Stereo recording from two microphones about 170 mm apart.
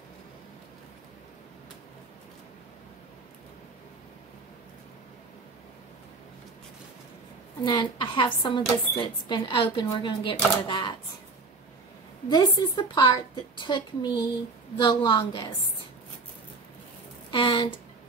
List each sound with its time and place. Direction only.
7.6 s speech: 25° left (ahead or behind)
12.3 s speech: 25° left (ahead or behind)
17.3 s speech: 30° left (ahead or behind)